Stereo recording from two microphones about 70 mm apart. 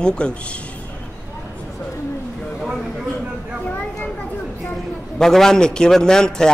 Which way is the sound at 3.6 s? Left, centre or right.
Left.